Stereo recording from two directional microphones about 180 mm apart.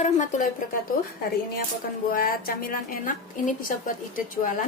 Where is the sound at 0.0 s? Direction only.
45° left (ahead or behind).